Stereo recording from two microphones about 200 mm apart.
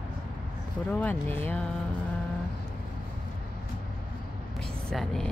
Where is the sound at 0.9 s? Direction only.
10° left (ahead or behind).